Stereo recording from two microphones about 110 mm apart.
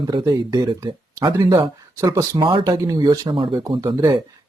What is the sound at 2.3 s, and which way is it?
Speech, 50° right (ahead or behind).